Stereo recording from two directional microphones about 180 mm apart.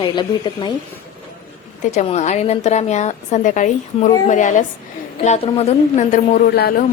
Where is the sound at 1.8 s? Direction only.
40° left (ahead or behind).